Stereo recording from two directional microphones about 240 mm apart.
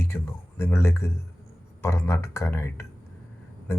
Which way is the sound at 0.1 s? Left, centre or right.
Centre.